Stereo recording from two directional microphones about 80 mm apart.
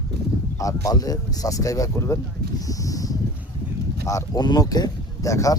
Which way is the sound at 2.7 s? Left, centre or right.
Left.